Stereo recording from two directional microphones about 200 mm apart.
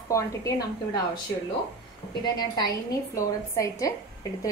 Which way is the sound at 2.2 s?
20° left (ahead or behind).